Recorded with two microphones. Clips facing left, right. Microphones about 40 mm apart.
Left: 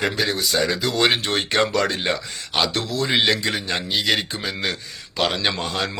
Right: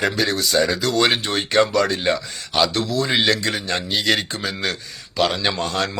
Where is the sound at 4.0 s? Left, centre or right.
Centre; by 5.5 s left.